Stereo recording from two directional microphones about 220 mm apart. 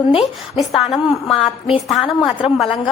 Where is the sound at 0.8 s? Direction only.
Centre (ahead or behind).